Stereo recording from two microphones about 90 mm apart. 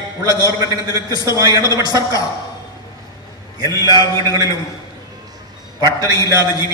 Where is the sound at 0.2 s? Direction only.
45° right (ahead or behind).